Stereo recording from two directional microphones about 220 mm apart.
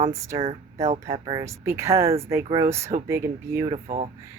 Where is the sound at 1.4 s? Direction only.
15° right (ahead or behind).